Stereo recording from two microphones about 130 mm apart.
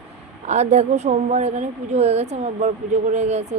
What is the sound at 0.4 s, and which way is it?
A woman's voice, 60° right (ahead or behind).